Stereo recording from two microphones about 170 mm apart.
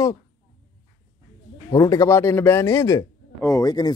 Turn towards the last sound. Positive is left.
turn(degrees=25)  # may be behind; listen again after turning